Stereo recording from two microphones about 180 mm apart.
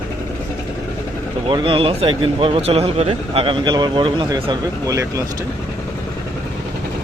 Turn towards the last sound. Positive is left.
turn(degrees=-20)  # may be behind; listen again after turning